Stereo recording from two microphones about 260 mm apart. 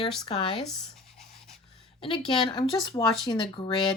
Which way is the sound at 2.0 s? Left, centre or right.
Centre.